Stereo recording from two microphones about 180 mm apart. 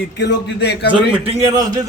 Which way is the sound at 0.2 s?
70° left (ahead or behind).